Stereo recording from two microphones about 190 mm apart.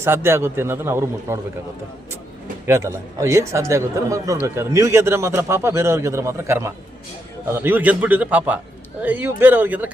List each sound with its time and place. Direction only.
0.0 s a man's voice: 15° right (ahead or behind)
2.6 s a man's voice: 15° right (ahead or behind)